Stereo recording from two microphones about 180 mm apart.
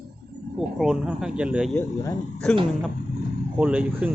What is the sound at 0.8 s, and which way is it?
Speech, 5° right (ahead or behind).